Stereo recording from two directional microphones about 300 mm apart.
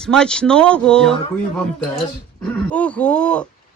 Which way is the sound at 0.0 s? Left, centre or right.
Centre.